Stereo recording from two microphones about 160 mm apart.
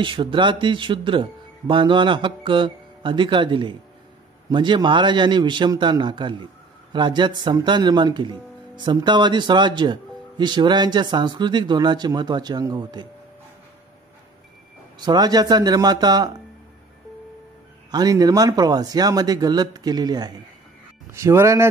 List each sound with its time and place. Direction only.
0.0 s speech: 30° right (ahead or behind)
15.0 s speech: 25° right (ahead or behind)
17.9 s a man's voice: 25° right (ahead or behind)